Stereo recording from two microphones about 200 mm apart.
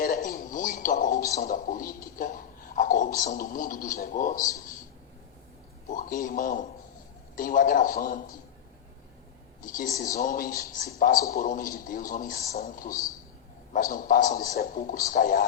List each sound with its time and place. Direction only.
0.0 s a sound: 45° left (ahead or behind)
0.4 s music: 40° left (ahead or behind)
1.4 s a sound: 40° left (ahead or behind)
3.2 s speech: 40° left (ahead or behind)
4.4 s a man's voice: 15° left (ahead or behind)
5.9 s speech: 40° left (ahead or behind)
9.6 s speech: 40° left (ahead or behind)